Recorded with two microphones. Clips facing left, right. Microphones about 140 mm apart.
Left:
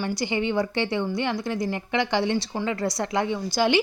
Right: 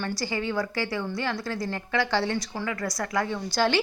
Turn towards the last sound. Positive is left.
turn(degrees=15)  # may be behind; listen again after turning